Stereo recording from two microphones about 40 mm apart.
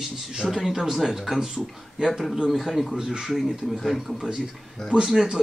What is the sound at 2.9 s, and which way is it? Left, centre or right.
Speech, centre.